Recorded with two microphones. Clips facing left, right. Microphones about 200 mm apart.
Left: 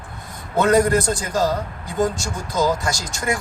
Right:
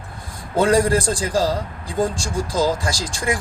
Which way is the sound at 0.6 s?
30° right (ahead or behind).